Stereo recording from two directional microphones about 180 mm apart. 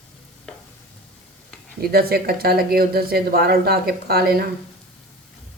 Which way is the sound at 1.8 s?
55° right (ahead or behind).